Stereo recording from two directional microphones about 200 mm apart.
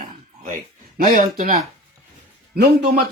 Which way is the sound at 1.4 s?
45° right (ahead or behind).